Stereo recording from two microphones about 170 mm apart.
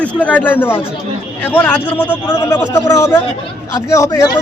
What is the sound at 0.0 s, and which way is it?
Speech, 10° left (ahead or behind).